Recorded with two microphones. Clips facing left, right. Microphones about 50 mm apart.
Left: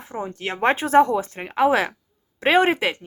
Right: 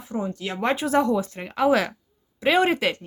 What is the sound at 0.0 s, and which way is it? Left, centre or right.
Speech, left.